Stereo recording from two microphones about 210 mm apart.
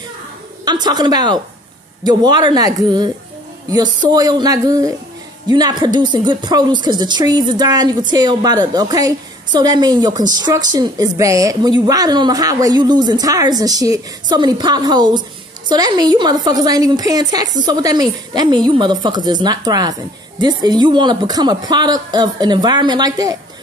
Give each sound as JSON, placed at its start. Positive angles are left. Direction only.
{"t": 0.8, "sound": "a woman's voice", "side_deg": -20}